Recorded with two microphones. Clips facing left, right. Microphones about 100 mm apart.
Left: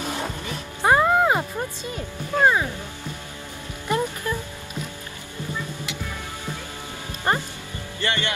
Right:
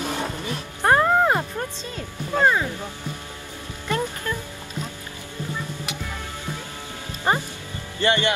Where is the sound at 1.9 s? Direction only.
15° left (ahead or behind).